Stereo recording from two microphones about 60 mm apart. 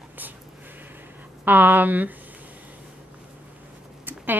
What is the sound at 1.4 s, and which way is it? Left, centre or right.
Speech, right.